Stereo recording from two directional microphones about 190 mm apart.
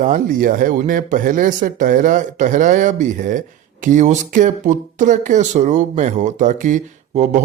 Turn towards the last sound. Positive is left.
turn(degrees=-40)  # may be behind; listen again after turning